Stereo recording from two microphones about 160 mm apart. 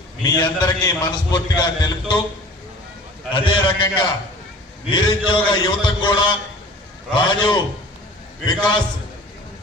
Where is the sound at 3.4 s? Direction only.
25° left (ahead or behind).